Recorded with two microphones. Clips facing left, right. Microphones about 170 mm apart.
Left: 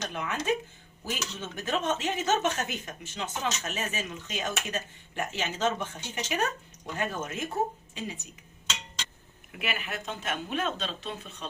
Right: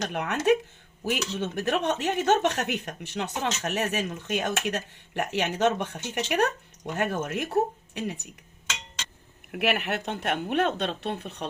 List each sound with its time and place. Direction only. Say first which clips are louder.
0.0 s speech: right 6 dB; 65° right (ahead or behind)
9.5 s speech: right 9 dB; 70° right (ahead or behind)